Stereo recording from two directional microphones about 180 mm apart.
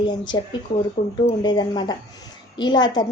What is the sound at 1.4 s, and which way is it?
A woman's voice, 25° left (ahead or behind).